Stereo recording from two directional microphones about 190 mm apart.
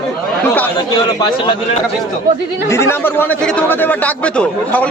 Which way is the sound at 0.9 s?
20° left (ahead or behind).